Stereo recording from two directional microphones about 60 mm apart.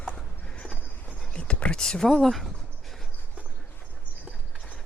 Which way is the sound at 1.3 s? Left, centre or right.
Centre.